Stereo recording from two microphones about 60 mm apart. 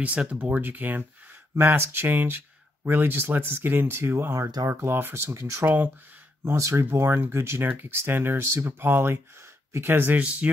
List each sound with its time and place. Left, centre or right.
0.0 s speech: right
4.4 s speech: right
4.6 s speech: right
10.2 s speech: right